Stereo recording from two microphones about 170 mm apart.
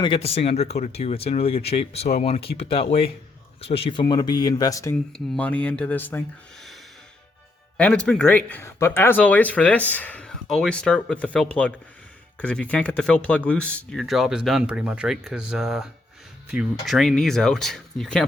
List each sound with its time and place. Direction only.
0.0 s speech: 35° left (ahead or behind)
5.1 s speech: 5° left (ahead or behind)
7.8 s speech: 5° left (ahead or behind)